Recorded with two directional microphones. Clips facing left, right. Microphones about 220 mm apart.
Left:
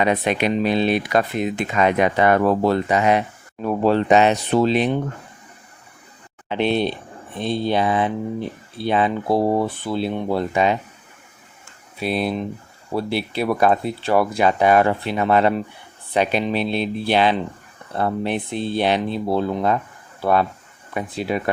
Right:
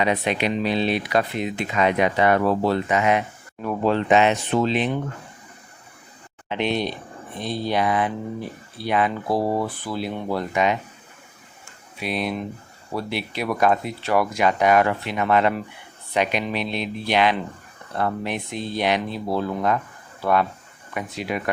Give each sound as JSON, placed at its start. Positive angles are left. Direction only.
{"t": 0.0, "sound": "speech", "side_deg": 50}
{"t": 6.5, "sound": "speech", "side_deg": 30}
{"t": 11.9, "sound": "speech", "side_deg": 30}
{"t": 20.9, "sound": "speech", "side_deg": 30}